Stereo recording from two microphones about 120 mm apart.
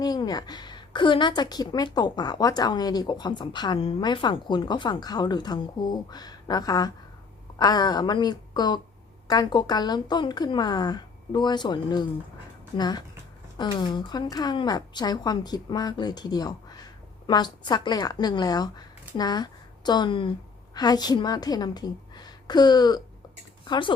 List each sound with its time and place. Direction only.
0.0 s a woman's voice: 35° left (ahead or behind)